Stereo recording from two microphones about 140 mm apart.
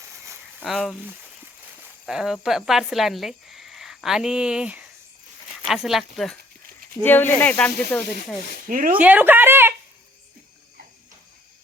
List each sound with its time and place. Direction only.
0.6 s speech: centre (ahead or behind)
2.0 s speech: 5° right (ahead or behind)
7.0 s speech: 15° left (ahead or behind)
8.6 s speech: 75° right (ahead or behind)
9.0 s a sound: 10° right (ahead or behind)